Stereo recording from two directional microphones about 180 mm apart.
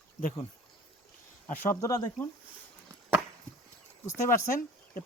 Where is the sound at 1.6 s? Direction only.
15° left (ahead or behind).